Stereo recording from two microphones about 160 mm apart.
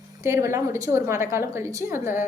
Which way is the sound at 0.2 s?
15° right (ahead or behind).